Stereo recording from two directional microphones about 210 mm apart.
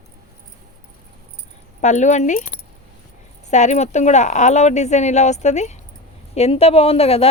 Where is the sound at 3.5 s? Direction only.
35° left (ahead or behind).